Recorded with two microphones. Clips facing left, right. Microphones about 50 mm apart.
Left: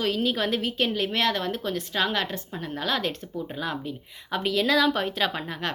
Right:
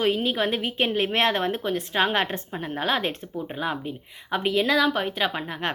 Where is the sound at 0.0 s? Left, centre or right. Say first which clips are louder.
Right 2 dB; right.